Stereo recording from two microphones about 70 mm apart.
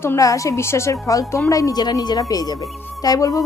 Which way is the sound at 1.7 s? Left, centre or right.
Left.